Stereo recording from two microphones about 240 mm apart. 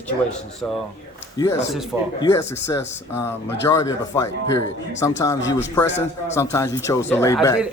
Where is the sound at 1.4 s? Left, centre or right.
Centre.